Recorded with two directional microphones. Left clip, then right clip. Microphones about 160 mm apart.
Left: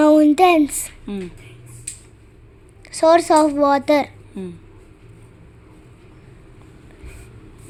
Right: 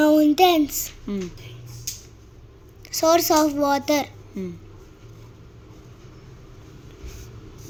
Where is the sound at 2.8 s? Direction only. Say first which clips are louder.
Left 5 dB; 25° left (ahead or behind).